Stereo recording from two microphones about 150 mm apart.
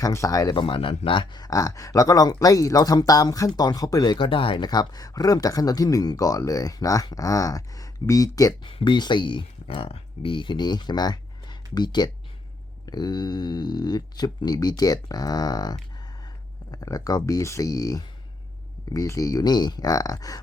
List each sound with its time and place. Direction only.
0.0 s speech: 20° left (ahead or behind)
16.7 s speech: 25° left (ahead or behind)